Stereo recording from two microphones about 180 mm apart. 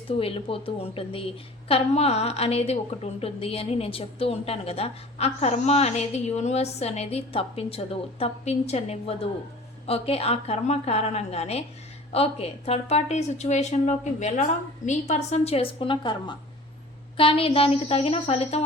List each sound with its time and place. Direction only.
0.1 s a woman's voice: 30° left (ahead or behind)